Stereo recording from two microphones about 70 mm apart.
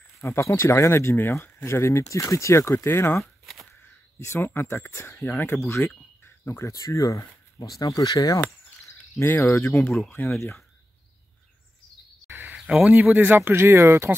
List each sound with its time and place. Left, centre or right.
0.2 s speech: left
3.2 s a sound: centre
4.2 s speech: left
9.4 s speech: left
10.0 s speech: left
12.3 s cricket: right
12.5 s speech: centre
13.1 s speech: right